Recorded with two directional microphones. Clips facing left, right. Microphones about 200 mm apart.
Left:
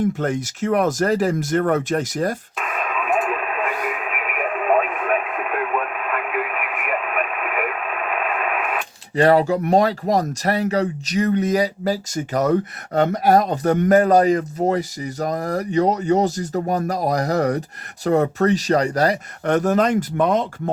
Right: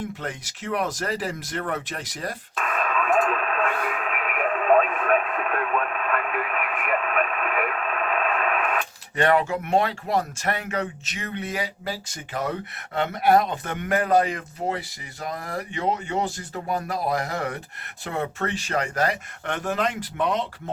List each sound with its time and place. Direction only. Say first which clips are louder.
0.0 s speech: left 11 dB; 45° left (ahead or behind)
2.6 s radio: even; 10° left (ahead or behind)
9.1 s speech: left 6 dB; 35° left (ahead or behind)